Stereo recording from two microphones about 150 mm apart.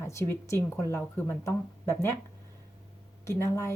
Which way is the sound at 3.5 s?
20° left (ahead or behind).